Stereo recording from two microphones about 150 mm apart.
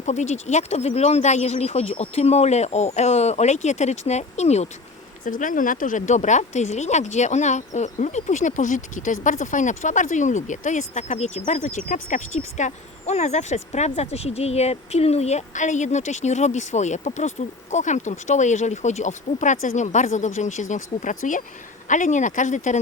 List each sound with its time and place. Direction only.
0.0 s speech: 50° left (ahead or behind)
5.2 s speech: 60° left (ahead or behind)